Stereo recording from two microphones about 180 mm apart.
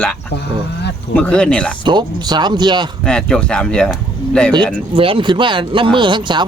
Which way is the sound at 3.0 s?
5° left (ahead or behind).